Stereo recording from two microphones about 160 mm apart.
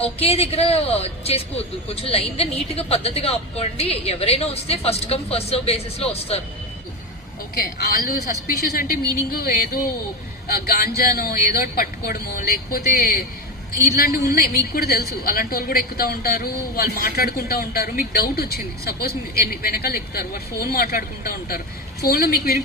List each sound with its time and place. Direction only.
0.0 s speech: 40° left (ahead or behind)
7.5 s a woman's voice: 70° left (ahead or behind)